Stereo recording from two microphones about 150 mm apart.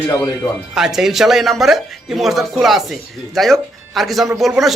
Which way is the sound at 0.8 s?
5° right (ahead or behind).